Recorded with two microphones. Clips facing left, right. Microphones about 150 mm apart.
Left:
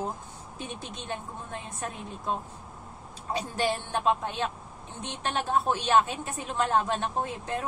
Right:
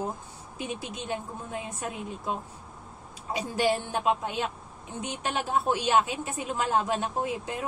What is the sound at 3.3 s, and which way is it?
A woman's voice, 10° right (ahead or behind).